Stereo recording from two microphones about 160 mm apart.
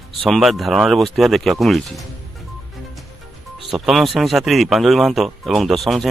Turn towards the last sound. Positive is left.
turn(degrees=0)  # may be behind; listen again after turning